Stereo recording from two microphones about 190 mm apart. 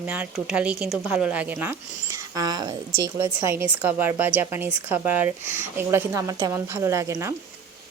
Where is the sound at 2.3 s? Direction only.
20° right (ahead or behind).